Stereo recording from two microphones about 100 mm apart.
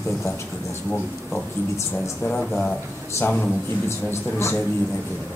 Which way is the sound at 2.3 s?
5° left (ahead or behind).